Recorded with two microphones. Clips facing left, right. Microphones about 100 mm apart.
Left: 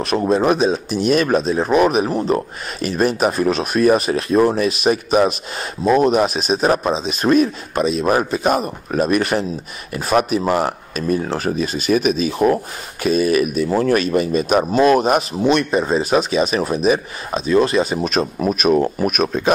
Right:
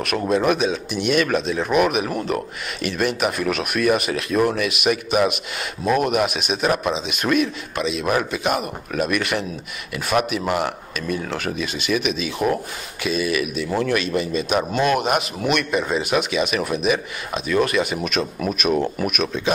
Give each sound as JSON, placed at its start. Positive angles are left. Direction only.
{"t": 0.0, "sound": "speech", "side_deg": 30}